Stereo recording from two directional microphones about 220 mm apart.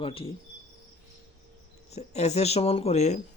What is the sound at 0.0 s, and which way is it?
Speech, 25° left (ahead or behind).